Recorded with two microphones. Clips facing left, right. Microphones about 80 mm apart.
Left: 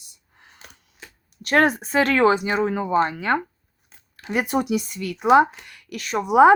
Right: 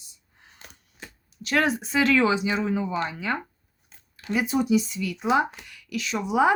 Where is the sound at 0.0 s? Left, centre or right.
Left.